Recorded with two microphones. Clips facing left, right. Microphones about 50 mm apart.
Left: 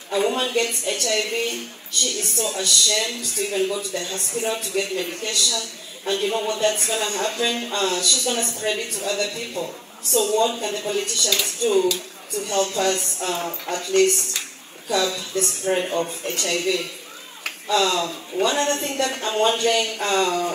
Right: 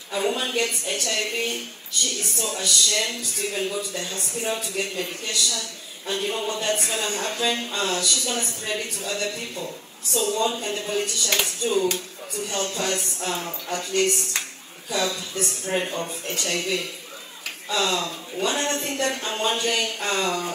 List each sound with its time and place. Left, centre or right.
0.1 s speech: left
17.6 s speech: left